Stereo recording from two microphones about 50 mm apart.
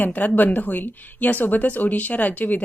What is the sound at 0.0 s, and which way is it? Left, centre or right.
Speech, left.